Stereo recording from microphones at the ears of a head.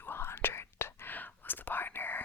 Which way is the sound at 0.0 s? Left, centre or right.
Left.